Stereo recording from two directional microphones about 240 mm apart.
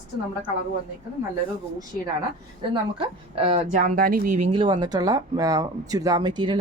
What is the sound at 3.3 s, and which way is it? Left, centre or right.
Speech, right.